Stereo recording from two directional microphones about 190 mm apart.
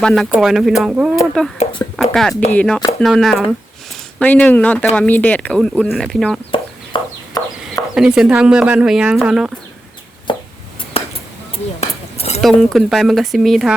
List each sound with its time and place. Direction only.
0.0 s speech: centre (ahead or behind)
2.0 s a sound: 5° left (ahead or behind)
2.3 s speech: 10° left (ahead or behind)
6.5 s chicken: 25° left (ahead or behind)
7.9 s speech: 5° right (ahead or behind)
10.3 s chopping: 25° left (ahead or behind)
11.0 s a sound: 30° left (ahead or behind)
12.4 s speech: centre (ahead or behind)